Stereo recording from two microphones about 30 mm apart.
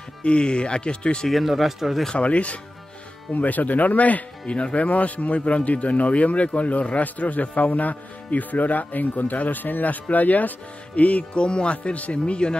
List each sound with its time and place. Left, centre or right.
0.2 s speech: left
1.3 s speech: centre
2.1 s speech: left
3.3 s speech: left
4.5 s speech: left
4.8 s speech: left
5.4 s speech: left
10.0 s speech: left
11.0 s speech: left
11.3 s speech: left